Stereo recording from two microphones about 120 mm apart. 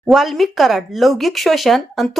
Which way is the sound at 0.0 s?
Centre (ahead or behind).